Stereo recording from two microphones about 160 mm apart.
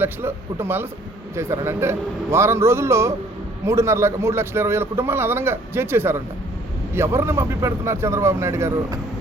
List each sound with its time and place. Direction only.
0.0 s a man's voice: 15° right (ahead or behind)